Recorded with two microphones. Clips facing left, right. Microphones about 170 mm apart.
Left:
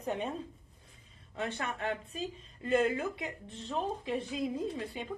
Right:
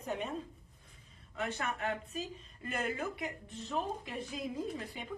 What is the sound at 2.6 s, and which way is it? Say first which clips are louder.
Speech: left 10 dB; 25° left (ahead or behind).